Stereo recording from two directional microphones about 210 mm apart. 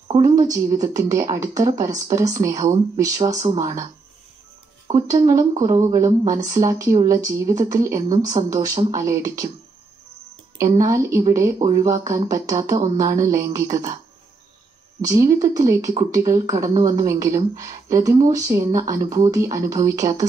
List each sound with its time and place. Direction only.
0.1 s speech: 15° right (ahead or behind)
4.9 s speech: 15° right (ahead or behind)
10.6 s speech: 15° right (ahead or behind)
15.0 s speech: 15° right (ahead or behind)